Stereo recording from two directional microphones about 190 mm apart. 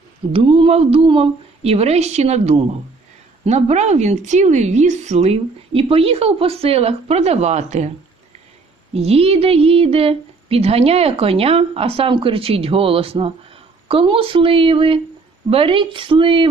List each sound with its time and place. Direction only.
0.3 s speech: 30° right (ahead or behind)
8.9 s a woman's voice: 30° right (ahead or behind)